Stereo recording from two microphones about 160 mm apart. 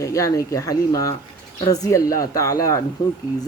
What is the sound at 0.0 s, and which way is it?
Speech, 20° left (ahead or behind).